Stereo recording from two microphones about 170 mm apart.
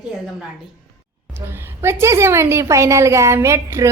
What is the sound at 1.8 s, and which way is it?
A woman's voice, 15° right (ahead or behind).